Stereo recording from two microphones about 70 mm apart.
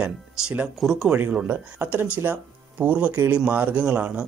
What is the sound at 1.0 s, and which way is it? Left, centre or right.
Speech, right.